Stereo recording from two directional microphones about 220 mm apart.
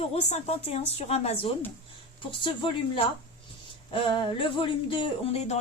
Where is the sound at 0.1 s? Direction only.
30° left (ahead or behind).